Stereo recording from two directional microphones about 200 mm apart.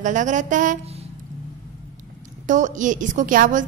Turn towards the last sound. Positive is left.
turn(degrees=-40)  # may be behind; listen again after turning